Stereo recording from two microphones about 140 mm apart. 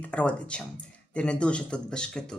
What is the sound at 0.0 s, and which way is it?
Speech, 10° left (ahead or behind).